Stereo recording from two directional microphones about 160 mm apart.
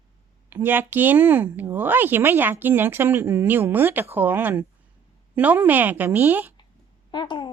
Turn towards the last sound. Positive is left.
turn(degrees=30)  # may be behind; listen again after turning